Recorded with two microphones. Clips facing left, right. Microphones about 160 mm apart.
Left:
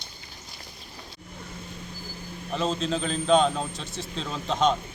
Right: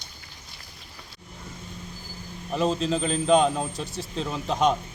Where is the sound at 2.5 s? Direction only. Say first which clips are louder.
Right 3 dB; 5° right (ahead or behind).